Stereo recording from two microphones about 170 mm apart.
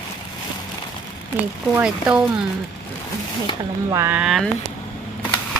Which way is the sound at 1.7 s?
5° right (ahead or behind).